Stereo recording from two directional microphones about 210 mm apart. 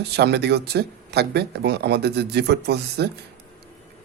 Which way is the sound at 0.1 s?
55° right (ahead or behind).